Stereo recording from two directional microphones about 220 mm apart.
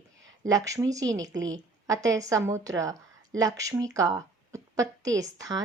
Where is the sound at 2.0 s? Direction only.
15° right (ahead or behind).